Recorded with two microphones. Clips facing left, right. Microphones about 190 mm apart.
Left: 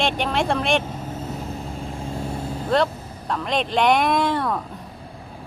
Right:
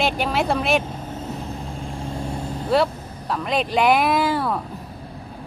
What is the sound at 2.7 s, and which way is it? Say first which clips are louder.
Speech: right 1 dB; 5° right (ahead or behind).